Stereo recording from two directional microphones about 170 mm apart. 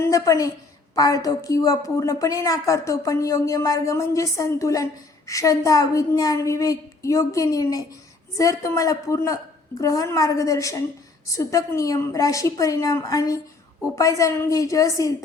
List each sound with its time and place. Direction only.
0.0 s a woman's voice: 20° left (ahead or behind)